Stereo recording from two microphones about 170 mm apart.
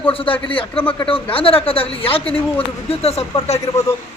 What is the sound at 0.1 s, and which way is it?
A man's voice, 30° left (ahead or behind).